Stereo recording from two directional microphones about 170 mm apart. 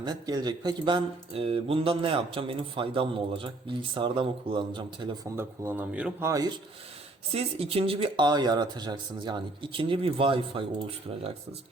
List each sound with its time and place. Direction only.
0.0 s speech: 25° right (ahead or behind)
5.4 s speech: 10° right (ahead or behind)
7.3 s speech: 35° right (ahead or behind)